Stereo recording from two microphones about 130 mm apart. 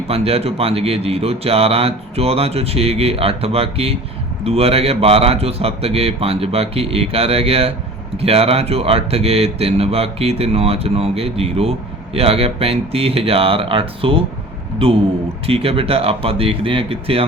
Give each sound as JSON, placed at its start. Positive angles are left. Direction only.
{"t": 0.1, "sound": "a man's voice", "side_deg": -50}